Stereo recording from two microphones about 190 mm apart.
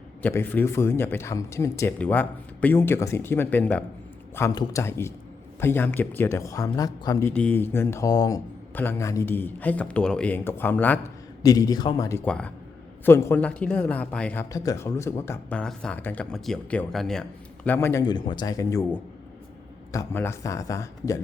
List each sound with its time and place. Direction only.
0.2 s a man's voice: 10° left (ahead or behind)
12.2 s speech: 5° left (ahead or behind)
14.5 s speech: 15° left (ahead or behind)